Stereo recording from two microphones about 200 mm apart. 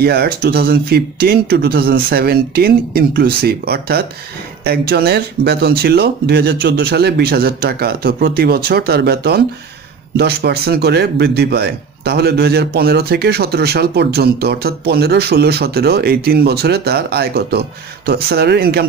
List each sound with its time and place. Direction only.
0.0 s speech: 50° right (ahead or behind)